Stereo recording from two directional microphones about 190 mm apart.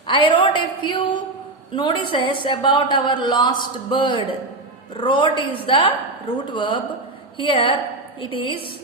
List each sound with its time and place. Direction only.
0.1 s a woman's voice: 25° left (ahead or behind)